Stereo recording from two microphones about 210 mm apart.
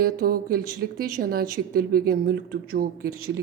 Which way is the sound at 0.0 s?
45° right (ahead or behind).